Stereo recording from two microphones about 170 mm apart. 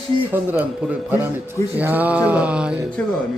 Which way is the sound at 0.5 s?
10° right (ahead or behind).